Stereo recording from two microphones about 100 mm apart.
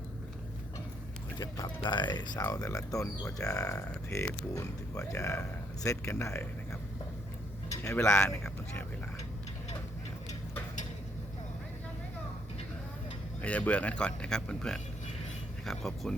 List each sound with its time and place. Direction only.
1.6 s speech: 50° left (ahead or behind)
2.5 s speech: 35° left (ahead or behind)
7.8 s speech: 25° left (ahead or behind)
13.4 s speech: 15° left (ahead or behind)